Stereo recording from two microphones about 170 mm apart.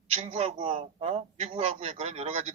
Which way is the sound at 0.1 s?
35° right (ahead or behind).